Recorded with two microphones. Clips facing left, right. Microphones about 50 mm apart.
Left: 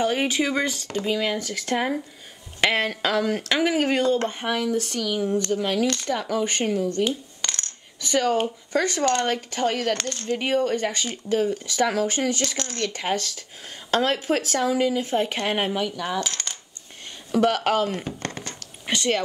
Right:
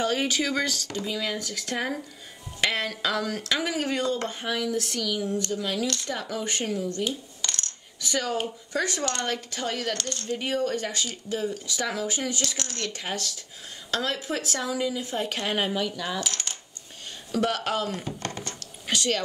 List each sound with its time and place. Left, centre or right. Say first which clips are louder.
0.0 s speech: left 3 dB; left
7.1 s coin: left 4 dB; left
9.0 s speech: left 7 dB; left
17.3 s speech: left 6 dB; left
18.0 s a sound: left 2 dB; left
18.9 s speech: left 3 dB; left